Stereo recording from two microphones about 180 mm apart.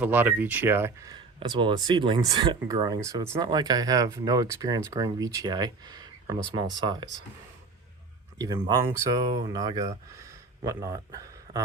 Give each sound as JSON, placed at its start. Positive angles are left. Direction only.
{"t": 0.0, "sound": "speech", "side_deg": -10}
{"t": 8.4, "sound": "speech", "side_deg": -20}